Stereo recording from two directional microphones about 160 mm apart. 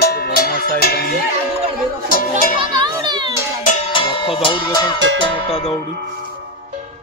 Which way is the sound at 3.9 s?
30° left (ahead or behind).